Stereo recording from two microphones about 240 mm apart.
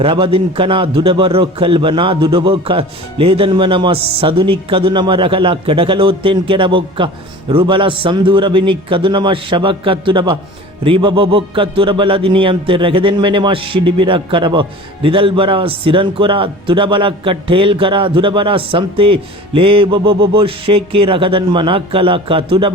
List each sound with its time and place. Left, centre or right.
0.0 s a man's voice: right